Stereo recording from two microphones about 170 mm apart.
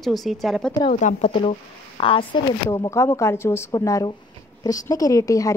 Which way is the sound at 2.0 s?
30° left (ahead or behind).